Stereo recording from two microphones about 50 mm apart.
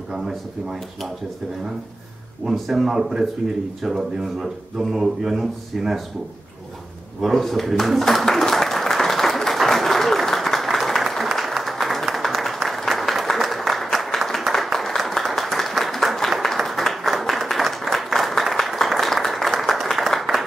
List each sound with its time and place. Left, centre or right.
0.1 s speech: centre
2.4 s speech: centre
7.2 s a sound: centre
11.3 s applause: centre